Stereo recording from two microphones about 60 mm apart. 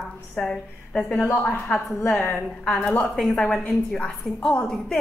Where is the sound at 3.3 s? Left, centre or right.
Centre.